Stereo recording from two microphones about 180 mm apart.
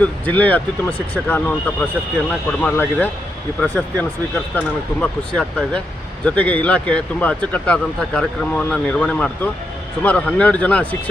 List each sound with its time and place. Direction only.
0.0 s speech: 10° left (ahead or behind)